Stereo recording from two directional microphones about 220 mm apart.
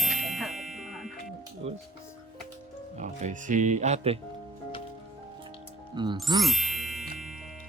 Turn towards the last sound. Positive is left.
turn(degrees=0)  # may be behind; listen again after turning